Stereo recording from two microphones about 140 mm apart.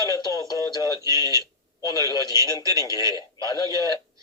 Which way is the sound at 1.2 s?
20° right (ahead or behind).